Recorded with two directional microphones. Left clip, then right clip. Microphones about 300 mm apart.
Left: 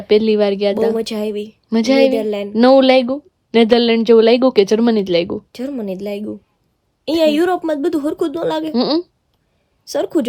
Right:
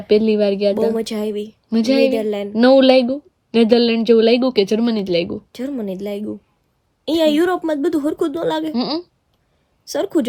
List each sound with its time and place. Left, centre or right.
0.1 s speech: centre
1.2 s speech: centre
1.6 s speech: centre
2.1 s speech: centre
2.6 s speech: centre
5.5 s a woman's voice: centre
8.6 s speech: centre